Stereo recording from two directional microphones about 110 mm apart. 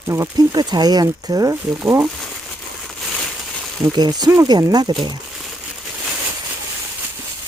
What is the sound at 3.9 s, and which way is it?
Speech, 40° right (ahead or behind).